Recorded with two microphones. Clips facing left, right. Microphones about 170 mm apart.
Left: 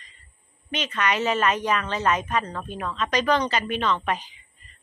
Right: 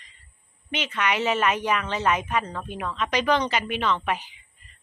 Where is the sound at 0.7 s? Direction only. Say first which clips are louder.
Left 1 dB; 10° right (ahead or behind).